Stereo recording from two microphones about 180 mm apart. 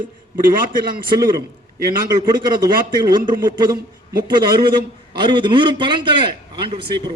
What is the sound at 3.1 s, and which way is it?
Speech, 20° right (ahead or behind).